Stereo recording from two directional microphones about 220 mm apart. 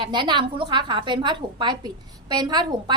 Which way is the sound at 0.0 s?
20° right (ahead or behind).